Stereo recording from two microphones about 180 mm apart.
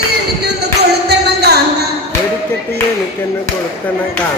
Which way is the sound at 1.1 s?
65° right (ahead or behind).